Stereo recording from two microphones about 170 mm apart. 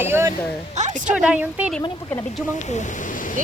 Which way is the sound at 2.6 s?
45° left (ahead or behind).